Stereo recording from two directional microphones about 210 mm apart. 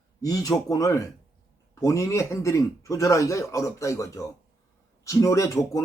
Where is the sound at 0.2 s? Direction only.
15° left (ahead or behind).